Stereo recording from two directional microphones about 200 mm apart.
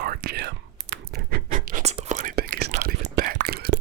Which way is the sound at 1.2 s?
45° right (ahead or behind).